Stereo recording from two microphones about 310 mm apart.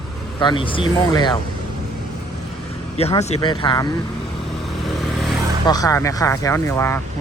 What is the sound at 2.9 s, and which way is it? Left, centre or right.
Speech, centre.